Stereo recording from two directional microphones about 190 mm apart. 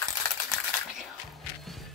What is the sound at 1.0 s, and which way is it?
Music, centre (ahead or behind).